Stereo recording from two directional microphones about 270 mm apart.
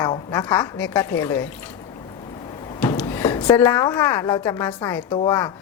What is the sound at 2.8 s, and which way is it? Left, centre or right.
A woman's voice, centre.